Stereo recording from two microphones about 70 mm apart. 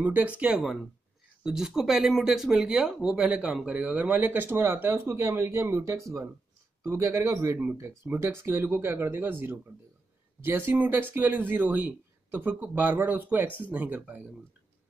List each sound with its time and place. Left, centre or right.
0.0 s a man's voice: right